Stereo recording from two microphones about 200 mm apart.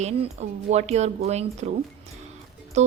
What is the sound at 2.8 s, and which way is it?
Music, 35° right (ahead or behind).